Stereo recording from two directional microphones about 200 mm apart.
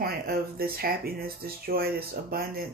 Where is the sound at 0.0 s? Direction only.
50° right (ahead or behind).